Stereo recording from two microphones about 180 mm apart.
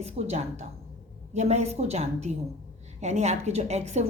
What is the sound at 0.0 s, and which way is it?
A woman's voice, 35° right (ahead or behind).